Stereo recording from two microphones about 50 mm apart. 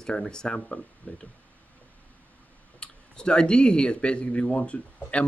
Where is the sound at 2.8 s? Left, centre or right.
Centre.